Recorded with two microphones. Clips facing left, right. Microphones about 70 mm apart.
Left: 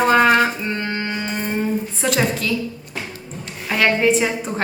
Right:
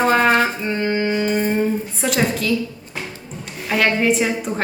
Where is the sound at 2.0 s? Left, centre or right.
Centre.